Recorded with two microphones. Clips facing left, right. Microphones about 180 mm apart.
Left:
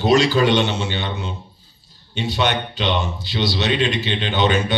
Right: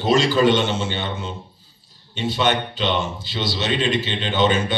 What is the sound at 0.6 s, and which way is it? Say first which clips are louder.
Speech: even; 45° right (ahead or behind).